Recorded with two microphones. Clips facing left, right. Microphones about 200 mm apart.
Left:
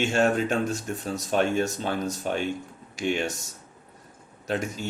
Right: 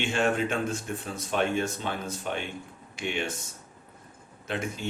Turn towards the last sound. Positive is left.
turn(degrees=40)  # may be behind; listen again after turning